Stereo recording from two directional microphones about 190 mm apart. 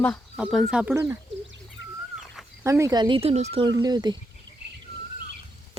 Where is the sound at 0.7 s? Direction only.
5° right (ahead or behind).